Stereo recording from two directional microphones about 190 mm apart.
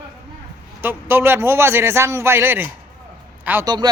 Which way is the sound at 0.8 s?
10° right (ahead or behind).